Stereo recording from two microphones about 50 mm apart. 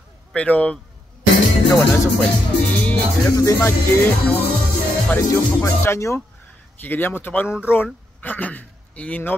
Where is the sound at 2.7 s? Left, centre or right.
Left.